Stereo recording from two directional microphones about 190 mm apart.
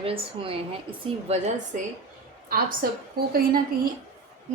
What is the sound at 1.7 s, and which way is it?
A woman's voice, 40° right (ahead or behind).